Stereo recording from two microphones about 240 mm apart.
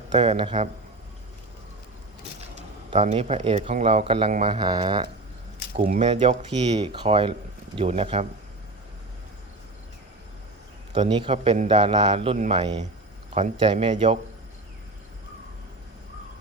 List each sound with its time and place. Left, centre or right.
0.1 s speech: right
2.6 s speech: right
5.7 s speech: right
10.9 s speech: centre